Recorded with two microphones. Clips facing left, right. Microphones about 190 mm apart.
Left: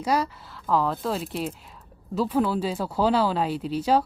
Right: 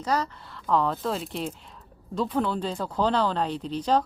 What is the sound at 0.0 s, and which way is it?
Speech, 10° left (ahead or behind).